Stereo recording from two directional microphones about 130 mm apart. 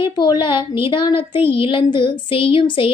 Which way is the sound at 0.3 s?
35° left (ahead or behind).